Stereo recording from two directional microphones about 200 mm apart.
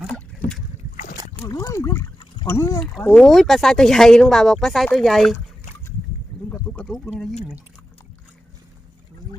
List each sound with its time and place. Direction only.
0.0 s boat: centre (ahead or behind)
1.5 s speech: 20° left (ahead or behind)
2.8 s speech: 5° left (ahead or behind)
6.5 s a sound: 5° left (ahead or behind)